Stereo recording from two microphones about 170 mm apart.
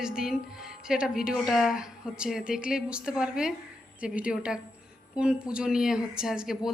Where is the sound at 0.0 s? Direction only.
5° right (ahead or behind).